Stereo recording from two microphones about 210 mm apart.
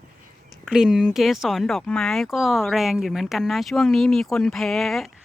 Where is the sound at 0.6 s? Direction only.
5° right (ahead or behind).